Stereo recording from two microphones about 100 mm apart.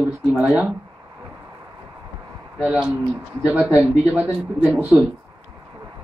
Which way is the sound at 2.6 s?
10° right (ahead or behind).